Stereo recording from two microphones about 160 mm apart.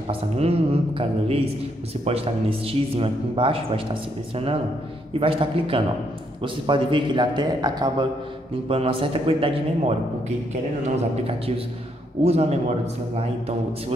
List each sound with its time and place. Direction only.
0.1 s a man's voice: 35° right (ahead or behind)
5.2 s a man's voice: 35° right (ahead or behind)
11.2 s a man's voice: 35° right (ahead or behind)